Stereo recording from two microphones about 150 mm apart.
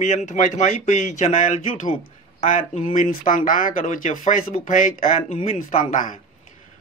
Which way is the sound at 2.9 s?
60° left (ahead or behind).